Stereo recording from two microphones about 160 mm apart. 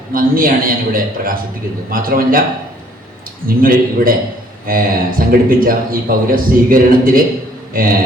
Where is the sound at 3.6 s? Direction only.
60° right (ahead or behind).